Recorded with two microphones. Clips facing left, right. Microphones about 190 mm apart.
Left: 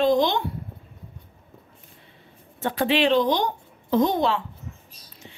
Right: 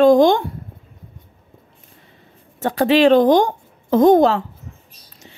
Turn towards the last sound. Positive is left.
turn(degrees=-45)  # may be behind; listen again after turning